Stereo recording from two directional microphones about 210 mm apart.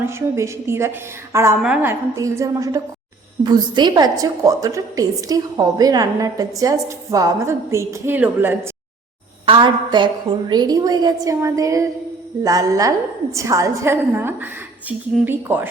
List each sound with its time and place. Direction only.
0.0 s a woman's voice: 10° right (ahead or behind)
9.5 s a woman's voice: 20° right (ahead or behind)